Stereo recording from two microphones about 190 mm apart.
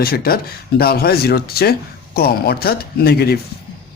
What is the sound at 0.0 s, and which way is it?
Speech, 50° left (ahead or behind).